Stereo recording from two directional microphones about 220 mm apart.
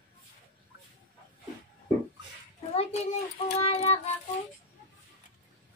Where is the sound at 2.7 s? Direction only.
30° left (ahead or behind).